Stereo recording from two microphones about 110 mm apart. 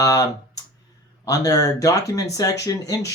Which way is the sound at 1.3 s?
30° left (ahead or behind).